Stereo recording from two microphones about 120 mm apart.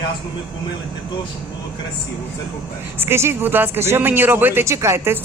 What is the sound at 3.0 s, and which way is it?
Speech, 20° right (ahead or behind).